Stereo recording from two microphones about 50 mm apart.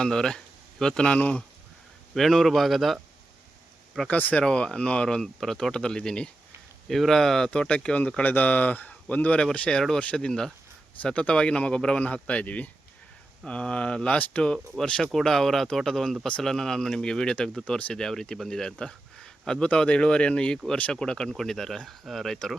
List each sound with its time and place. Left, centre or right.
0.0 s speech: centre
2.1 s a man's voice: centre
4.1 s speech: left
4.4 s speech: centre
6.8 s speech: centre; by 9.5 s left
9.6 s speech: centre
11.0 s speech: left
17.7 s speech: left
17.9 s speech: centre
18.8 s a sound: centre
19.7 s a man's voice: centre